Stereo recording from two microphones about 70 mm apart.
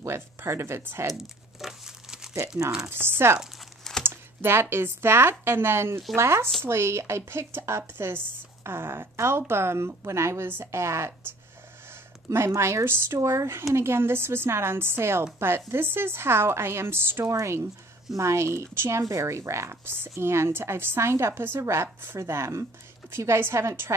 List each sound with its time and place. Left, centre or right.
0.0 s speech: right
1.1 s crumpling: centre
2.9 s speech: right
12.3 s speech: right